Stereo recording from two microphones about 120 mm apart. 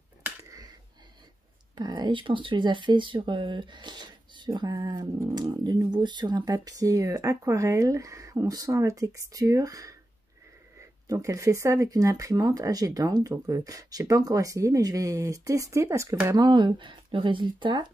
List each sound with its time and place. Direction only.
1.8 s speech: 35° right (ahead or behind)
11.1 s speech: 25° right (ahead or behind)
16.4 s speech: 40° right (ahead or behind)